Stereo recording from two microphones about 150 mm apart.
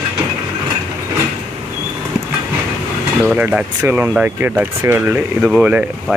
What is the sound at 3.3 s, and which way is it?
Speech, 10° right (ahead or behind).